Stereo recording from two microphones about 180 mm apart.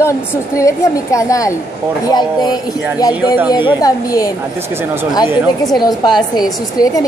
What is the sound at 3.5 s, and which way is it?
Speech, 25° left (ahead or behind).